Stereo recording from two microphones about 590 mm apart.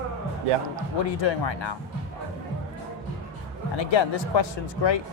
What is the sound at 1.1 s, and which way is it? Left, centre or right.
Speech, left.